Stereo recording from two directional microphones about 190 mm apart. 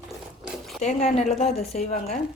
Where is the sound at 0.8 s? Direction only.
35° left (ahead or behind).